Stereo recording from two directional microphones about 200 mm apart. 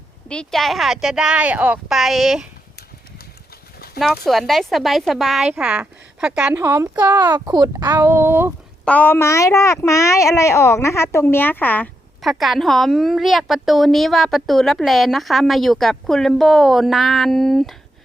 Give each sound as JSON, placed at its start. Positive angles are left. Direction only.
{"t": 0.3, "sound": "speech", "side_deg": 5}
{"t": 3.9, "sound": "speech", "side_deg": 0}
{"t": 8.8, "sound": "speech", "side_deg": 5}